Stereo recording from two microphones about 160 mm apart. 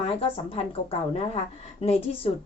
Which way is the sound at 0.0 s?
35° left (ahead or behind).